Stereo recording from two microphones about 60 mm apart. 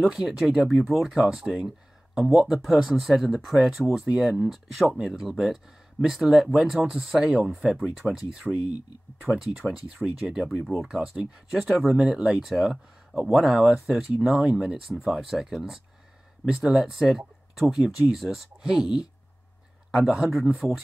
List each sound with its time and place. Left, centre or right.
0.0 s speech: centre
9.6 s speech: left
10.0 s speech: centre
10.6 s speech: centre
20.2 s speech: centre